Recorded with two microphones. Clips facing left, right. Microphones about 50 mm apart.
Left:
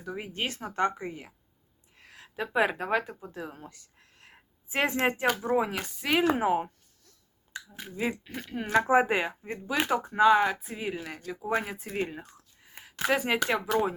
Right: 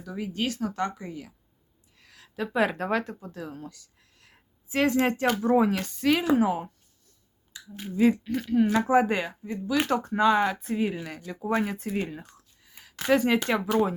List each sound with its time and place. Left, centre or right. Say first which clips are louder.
0.0 s speech: right 3 dB; left
3.7 s a sound: right 4 dB; left
5.0 s speech: right 2 dB; centre
6.2 s speech: right 2 dB; left
7.7 s speech: right 10 dB; centre
8.7 s speech: left 4 dB; centre
10.1 s speech: left 2 dB; centre